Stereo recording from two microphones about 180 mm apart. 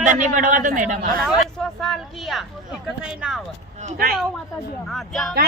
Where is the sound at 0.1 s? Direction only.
45° right (ahead or behind).